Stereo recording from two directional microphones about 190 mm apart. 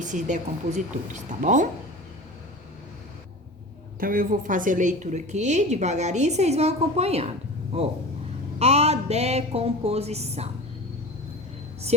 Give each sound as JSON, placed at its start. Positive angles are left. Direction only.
{"t": 0.0, "sound": "a woman's voice", "side_deg": -40}
{"t": 4.0, "sound": "a woman's voice", "side_deg": -45}
{"t": 8.5, "sound": "a woman's voice", "side_deg": -35}